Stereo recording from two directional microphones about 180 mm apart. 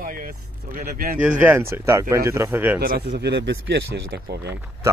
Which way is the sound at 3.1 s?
70° right (ahead or behind).